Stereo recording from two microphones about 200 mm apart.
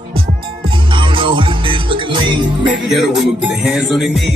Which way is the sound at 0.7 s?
25° right (ahead or behind).